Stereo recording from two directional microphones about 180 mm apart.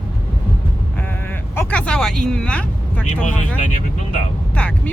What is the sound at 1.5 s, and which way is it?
Vehicle, 5° left (ahead or behind).